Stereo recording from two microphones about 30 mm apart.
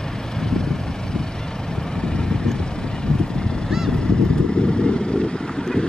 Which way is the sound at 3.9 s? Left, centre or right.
Left.